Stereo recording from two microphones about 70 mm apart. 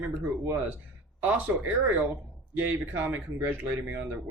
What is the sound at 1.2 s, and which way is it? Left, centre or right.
Speech, right.